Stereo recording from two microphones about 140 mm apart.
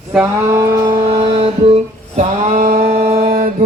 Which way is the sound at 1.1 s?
45° right (ahead or behind).